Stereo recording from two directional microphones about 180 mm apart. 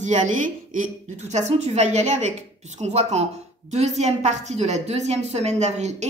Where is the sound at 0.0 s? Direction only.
40° right (ahead or behind).